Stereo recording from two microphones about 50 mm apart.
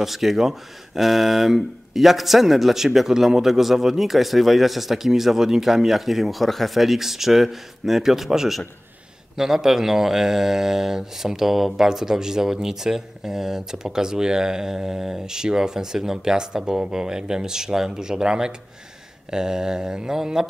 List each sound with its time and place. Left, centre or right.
0.0 s speech: centre